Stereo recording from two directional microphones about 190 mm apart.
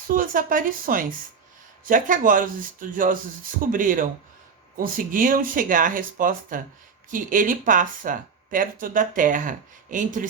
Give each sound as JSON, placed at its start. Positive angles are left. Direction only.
{"t": 0.1, "sound": "speech", "side_deg": -45}